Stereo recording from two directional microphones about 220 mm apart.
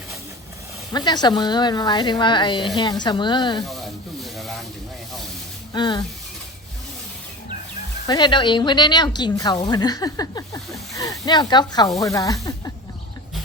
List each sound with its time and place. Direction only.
0.9 s speech: 20° left (ahead or behind)
3.7 s rub: centre (ahead or behind)
5.7 s speech: 20° left (ahead or behind)
8.0 s speech: 20° left (ahead or behind)